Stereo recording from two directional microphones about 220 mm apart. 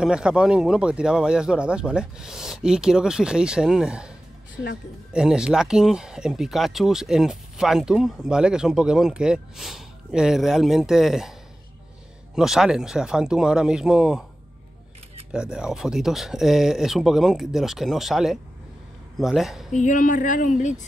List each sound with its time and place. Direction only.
0.0 s speech: 5° right (ahead or behind)
5.1 s speech: 5° right (ahead or behind)
12.4 s speech: centre (ahead or behind)
15.3 s speech: 5° right (ahead or behind)
19.7 s speech: 35° left (ahead or behind)